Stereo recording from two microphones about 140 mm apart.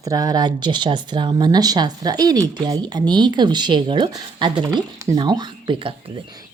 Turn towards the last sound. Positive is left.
turn(degrees=-35)  # may be behind; listen again after turning